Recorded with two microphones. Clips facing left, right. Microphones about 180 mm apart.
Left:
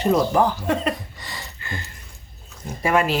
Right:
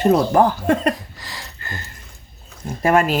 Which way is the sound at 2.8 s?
50° right (ahead or behind).